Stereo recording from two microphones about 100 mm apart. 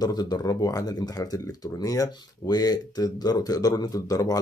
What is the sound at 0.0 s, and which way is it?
Speech, 40° left (ahead or behind).